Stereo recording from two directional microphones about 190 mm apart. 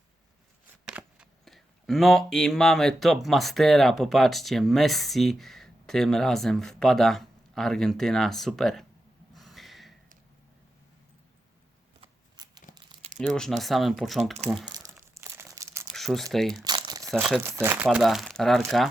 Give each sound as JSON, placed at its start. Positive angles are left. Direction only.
{"t": 0.9, "sound": "speech", "side_deg": -5}
{"t": 9.3, "sound": "snort", "side_deg": 0}
{"t": 12.0, "sound": "shuffling cards", "side_deg": -20}
{"t": 12.7, "sound": "crumpling", "side_deg": -30}
{"t": 13.1, "sound": "speech", "side_deg": 5}
{"t": 14.7, "sound": "crumpling", "side_deg": -15}
{"t": 16.0, "sound": "a sound", "side_deg": 0}
{"t": 16.3, "sound": "speech", "side_deg": 0}
{"t": 16.6, "sound": "crumpling", "side_deg": -20}
{"t": 17.2, "sound": "speech", "side_deg": -10}